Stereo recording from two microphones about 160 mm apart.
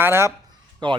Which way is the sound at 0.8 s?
30° right (ahead or behind).